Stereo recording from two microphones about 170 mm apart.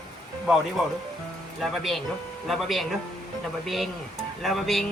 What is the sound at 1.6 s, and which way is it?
A man's voice, centre (ahead or behind).